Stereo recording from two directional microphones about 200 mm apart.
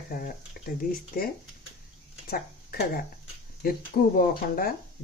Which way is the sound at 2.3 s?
45° left (ahead or behind).